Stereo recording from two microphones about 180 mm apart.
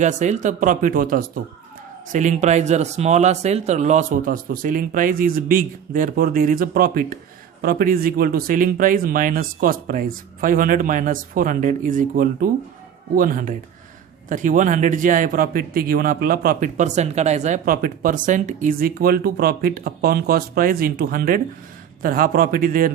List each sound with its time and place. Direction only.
0.0 s a man's voice: 40° right (ahead or behind)